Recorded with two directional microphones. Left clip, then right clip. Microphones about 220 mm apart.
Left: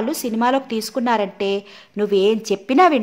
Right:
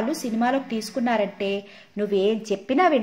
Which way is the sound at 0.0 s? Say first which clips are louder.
Left 4 dB; 35° left (ahead or behind).